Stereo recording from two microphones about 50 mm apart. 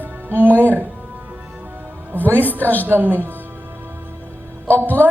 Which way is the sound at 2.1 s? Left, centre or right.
Right.